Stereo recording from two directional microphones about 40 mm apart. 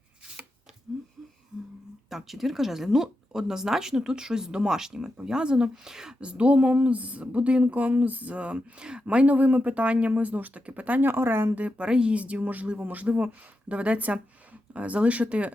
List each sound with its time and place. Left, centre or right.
1.5 s a sound: right
2.0 s speech: centre
6.1 s speech: right
11.0 s speech: right
11.8 s speech: right
12.1 s speech: right